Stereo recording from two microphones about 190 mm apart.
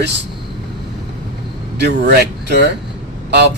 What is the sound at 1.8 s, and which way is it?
Speech, 60° right (ahead or behind).